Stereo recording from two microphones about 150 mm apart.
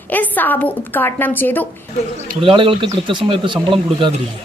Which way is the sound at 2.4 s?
35° right (ahead or behind).